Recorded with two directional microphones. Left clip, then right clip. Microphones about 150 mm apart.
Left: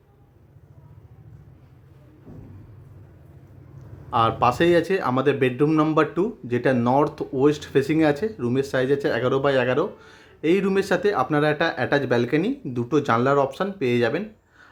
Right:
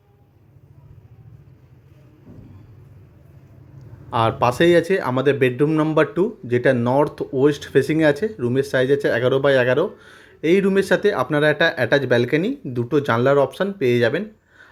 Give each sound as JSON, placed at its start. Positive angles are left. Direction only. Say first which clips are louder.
{"t": 4.1, "sound": "speech", "louder": "right 1 dB", "side_deg": -20}